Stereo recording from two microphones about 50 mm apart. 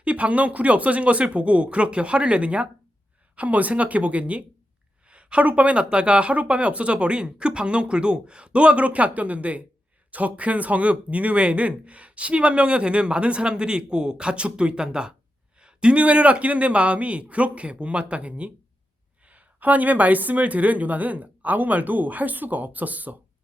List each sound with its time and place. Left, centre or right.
0.0 s speech: right